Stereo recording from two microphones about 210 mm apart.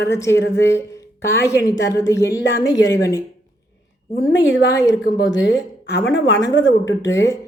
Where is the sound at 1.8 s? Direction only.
60° left (ahead or behind).